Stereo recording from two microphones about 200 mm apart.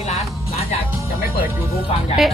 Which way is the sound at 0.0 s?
35° left (ahead or behind).